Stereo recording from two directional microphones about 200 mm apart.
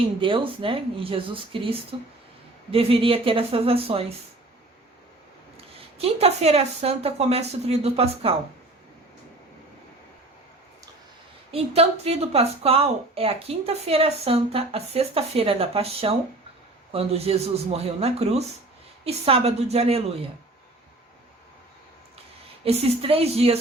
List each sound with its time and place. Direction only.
0.0 s a woman's voice: 25° right (ahead or behind)
5.5 s speech: 30° right (ahead or behind)
11.5 s a woman's voice: 30° right (ahead or behind)
22.6 s a woman's voice: 30° right (ahead or behind)